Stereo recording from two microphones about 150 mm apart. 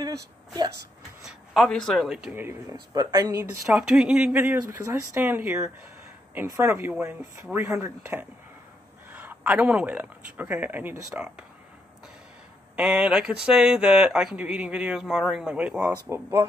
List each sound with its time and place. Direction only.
1.2 s speech: centre (ahead or behind)
2.7 s speech: 25° right (ahead or behind)
3.7 s speech: 5° right (ahead or behind)
12.7 s speech: 5° right (ahead or behind)